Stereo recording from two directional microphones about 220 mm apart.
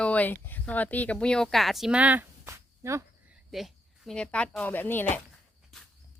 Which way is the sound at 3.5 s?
Centre (ahead or behind).